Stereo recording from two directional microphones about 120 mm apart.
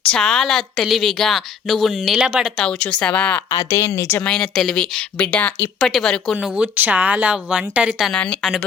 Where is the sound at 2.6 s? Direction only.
10° left (ahead or behind).